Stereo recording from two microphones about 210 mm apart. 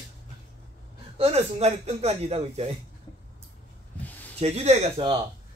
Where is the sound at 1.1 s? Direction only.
30° right (ahead or behind).